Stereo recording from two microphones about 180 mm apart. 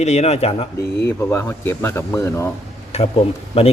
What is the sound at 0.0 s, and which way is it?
Speech, 35° left (ahead or behind).